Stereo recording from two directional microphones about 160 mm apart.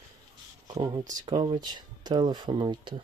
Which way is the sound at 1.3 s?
25° right (ahead or behind).